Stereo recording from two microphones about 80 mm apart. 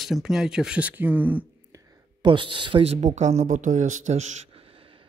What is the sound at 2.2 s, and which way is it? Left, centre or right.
Speech, right.